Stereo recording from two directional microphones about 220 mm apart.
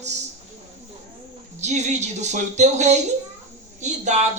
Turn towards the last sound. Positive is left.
turn(degrees=-30)  # may be behind; listen again after turning